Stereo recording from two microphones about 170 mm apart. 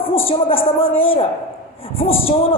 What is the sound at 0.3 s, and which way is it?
A woman's voice, 35° left (ahead or behind).